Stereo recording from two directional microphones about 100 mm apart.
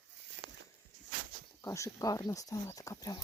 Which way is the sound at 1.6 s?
30° left (ahead or behind).